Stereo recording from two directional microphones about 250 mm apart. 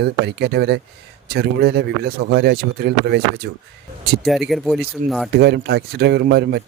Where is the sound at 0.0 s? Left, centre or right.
Right.